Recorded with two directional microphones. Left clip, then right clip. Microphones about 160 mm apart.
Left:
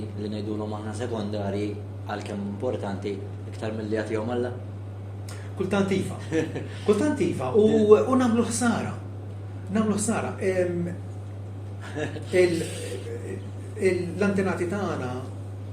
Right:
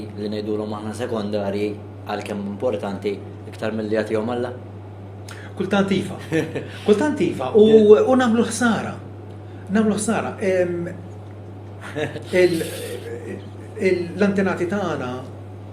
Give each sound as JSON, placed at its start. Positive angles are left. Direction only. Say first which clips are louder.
{"t": 0.2, "sound": "speech", "louder": "right 7 dB", "side_deg": -45}
{"t": 5.5, "sound": "speech", "louder": "right 5 dB", "side_deg": -50}
{"t": 11.9, "sound": "speech", "louder": "right 4 dB", "side_deg": -45}